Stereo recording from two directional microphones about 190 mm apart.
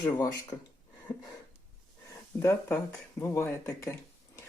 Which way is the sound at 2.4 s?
10° left (ahead or behind).